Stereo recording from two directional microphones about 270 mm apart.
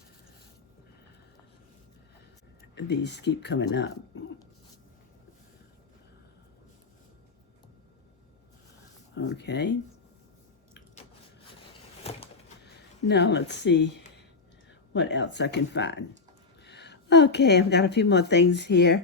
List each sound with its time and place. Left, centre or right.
2.7 s speech: left
9.1 s a sound: left
13.1 s speech: left
14.9 s speech: left